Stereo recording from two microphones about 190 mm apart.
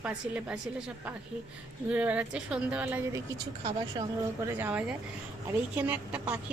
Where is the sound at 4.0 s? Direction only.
20° right (ahead or behind).